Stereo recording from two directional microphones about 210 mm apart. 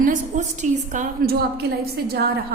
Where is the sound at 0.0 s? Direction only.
35° right (ahead or behind).